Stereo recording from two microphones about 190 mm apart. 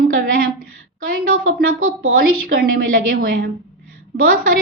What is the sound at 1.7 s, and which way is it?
Speech, 90° right.